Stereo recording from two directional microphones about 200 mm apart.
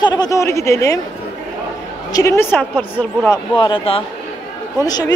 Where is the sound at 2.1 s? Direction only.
15° left (ahead or behind).